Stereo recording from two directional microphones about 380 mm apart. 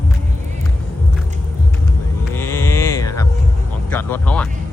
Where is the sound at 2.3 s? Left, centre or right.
Centre.